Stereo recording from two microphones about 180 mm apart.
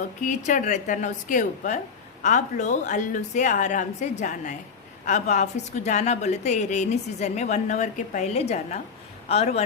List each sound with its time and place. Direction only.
0.3 s a woman's voice: 45° left (ahead or behind)